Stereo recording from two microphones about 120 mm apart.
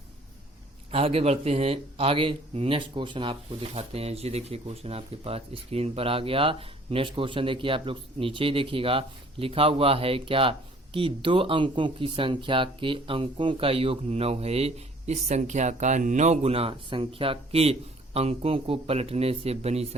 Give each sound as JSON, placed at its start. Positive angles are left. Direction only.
{"t": 0.9, "sound": "speech", "side_deg": -55}